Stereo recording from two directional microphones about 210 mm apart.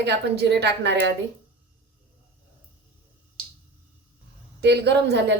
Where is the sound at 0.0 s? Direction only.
50° right (ahead or behind).